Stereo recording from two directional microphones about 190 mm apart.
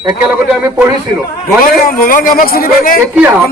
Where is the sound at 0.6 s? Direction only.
20° right (ahead or behind).